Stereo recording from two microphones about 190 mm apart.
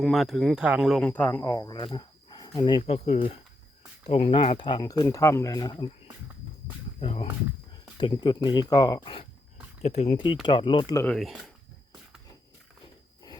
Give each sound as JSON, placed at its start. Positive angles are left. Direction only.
{"t": 0.0, "sound": "speech", "side_deg": 0}
{"t": 1.5, "sound": "speech", "side_deg": 20}
{"t": 7.0, "sound": "speech", "side_deg": 30}
{"t": 11.0, "sound": "speech", "side_deg": 0}